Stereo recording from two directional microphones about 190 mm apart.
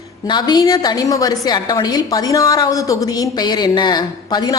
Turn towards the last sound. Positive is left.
turn(degrees=20)  # may be behind; listen again after turning